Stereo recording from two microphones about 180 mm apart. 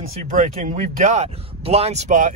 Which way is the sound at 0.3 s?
50° right (ahead or behind).